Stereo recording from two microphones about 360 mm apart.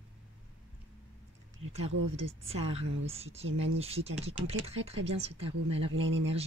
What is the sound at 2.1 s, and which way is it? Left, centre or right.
Speech, centre.